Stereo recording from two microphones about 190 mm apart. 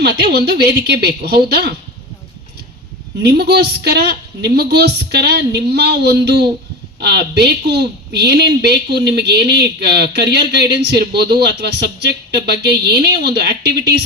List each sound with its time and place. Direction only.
0.0 s speech: 55° right (ahead or behind)
3.2 s speech: 60° right (ahead or behind)